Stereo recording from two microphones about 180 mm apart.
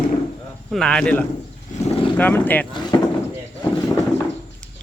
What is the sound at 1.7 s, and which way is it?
Speech, 45° left (ahead or behind).